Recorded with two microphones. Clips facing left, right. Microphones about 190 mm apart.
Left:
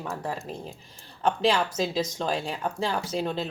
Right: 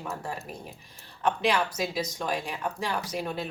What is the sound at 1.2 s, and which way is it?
Speech, 30° left (ahead or behind).